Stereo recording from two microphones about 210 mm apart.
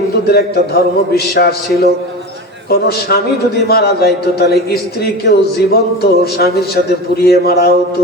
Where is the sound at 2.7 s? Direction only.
50° left (ahead or behind).